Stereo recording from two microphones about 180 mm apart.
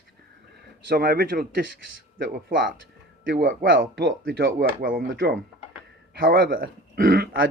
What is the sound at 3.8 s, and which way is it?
Speech, 60° right (ahead or behind).